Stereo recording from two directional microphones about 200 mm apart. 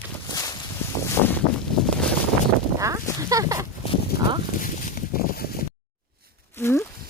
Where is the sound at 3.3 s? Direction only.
15° right (ahead or behind).